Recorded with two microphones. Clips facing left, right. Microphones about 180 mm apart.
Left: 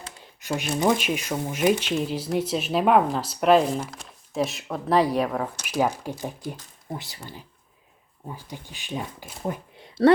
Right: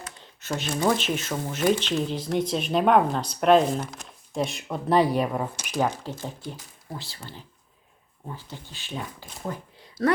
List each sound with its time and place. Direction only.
0.2 s speech: 10° left (ahead or behind); by 5.6 s 5° right (ahead or behind)
5.6 s speech: 10° left (ahead or behind)
9.4 s a sound: 20° left (ahead or behind)